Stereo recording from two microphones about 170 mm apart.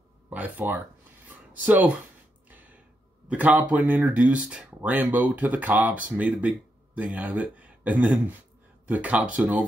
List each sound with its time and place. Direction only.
0.3 s speech: 10° right (ahead or behind)
2.5 s a sound: 10° right (ahead or behind)
3.3 s speech: 10° right (ahead or behind)